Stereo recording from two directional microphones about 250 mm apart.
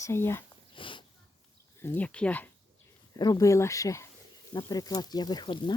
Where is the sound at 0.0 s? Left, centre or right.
Centre.